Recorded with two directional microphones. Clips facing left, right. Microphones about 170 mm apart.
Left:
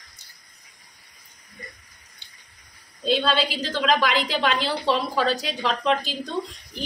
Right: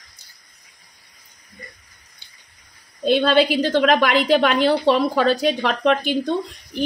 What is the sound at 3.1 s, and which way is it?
A woman's voice, 55° right (ahead or behind).